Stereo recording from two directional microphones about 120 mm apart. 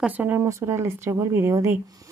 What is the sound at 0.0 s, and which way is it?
Speech, 15° right (ahead or behind).